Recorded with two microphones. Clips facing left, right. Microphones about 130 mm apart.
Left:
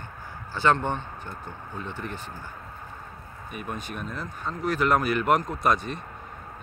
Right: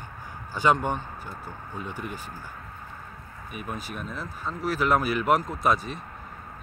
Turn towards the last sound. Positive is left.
turn(degrees=0)  # may be behind; listen again after turning